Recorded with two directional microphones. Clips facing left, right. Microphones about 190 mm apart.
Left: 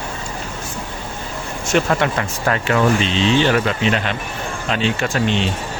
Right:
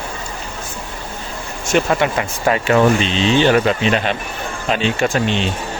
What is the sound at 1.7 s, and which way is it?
Speech, 5° right (ahead or behind).